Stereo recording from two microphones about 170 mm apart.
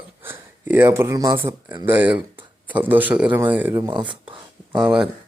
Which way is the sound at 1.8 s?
10° right (ahead or behind).